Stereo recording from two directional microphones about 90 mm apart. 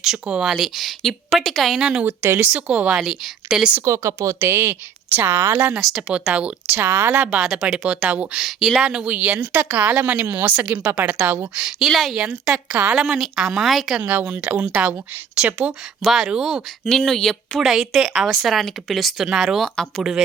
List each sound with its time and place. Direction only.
0.0 s speech: 5° right (ahead or behind)
2.0 s speech: 25° right (ahead or behind); by 3.7 s 5° right (ahead or behind)
3.8 s speech: 35° right (ahead or behind)
5.8 s speech: 5° right (ahead or behind)
6.8 s speech: 25° right (ahead or behind)
8.4 s speech: centre (ahead or behind)
8.8 s speech: 15° right (ahead or behind)
11.5 s speech: 5° right (ahead or behind)
12.2 s speech: 15° right (ahead or behind)
14.0 s speech: 15° right (ahead or behind); by 19.9 s 5° left (ahead or behind)
20.0 s speech: 5° right (ahead or behind)